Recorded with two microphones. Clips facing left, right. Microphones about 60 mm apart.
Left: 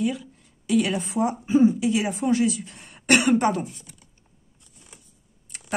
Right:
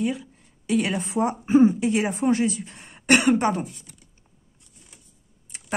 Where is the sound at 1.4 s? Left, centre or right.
Right.